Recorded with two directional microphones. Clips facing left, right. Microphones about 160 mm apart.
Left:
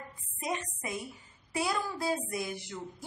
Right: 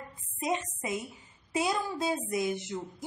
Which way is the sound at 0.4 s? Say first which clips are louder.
Right 4 dB; 20° right (ahead or behind).